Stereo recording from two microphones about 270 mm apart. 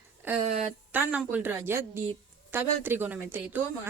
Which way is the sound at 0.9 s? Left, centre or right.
Centre.